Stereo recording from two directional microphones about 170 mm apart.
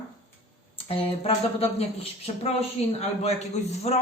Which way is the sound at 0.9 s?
35° left (ahead or behind).